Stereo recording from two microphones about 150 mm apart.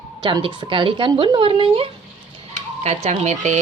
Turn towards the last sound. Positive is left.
turn(degrees=-50)  # may be behind; listen again after turning